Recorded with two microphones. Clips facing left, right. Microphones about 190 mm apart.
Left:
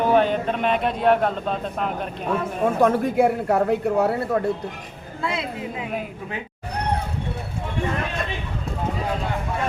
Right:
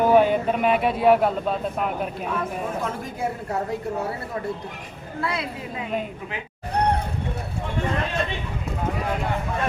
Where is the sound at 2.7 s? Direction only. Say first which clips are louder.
Left 11 dB; 65° left (ahead or behind).